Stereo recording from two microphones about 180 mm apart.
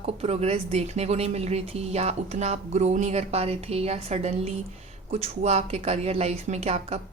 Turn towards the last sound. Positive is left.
turn(degrees=-35)  # may be behind; listen again after turning